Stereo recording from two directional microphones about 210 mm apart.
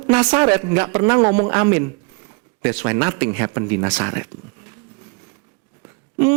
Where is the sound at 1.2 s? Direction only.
35° right (ahead or behind).